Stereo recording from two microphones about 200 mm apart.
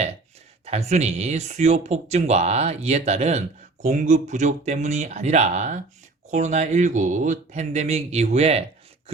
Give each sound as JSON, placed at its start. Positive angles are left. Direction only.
{"t": 0.6, "sound": "speech", "side_deg": -30}